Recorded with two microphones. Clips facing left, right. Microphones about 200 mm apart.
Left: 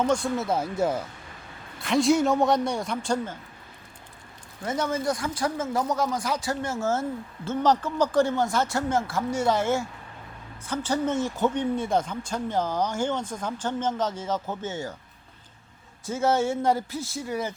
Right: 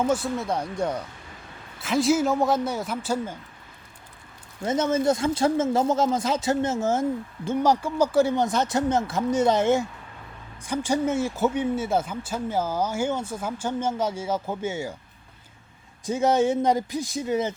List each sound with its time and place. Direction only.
0.0 s speech: 5° right (ahead or behind)
4.6 s speech: 20° right (ahead or behind)
16.0 s speech: 15° right (ahead or behind)